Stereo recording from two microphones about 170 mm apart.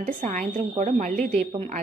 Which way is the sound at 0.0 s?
50° right (ahead or behind).